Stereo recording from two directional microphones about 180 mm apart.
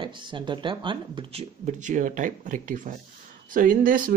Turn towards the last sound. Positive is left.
turn(degrees=-50)  # may be behind; listen again after turning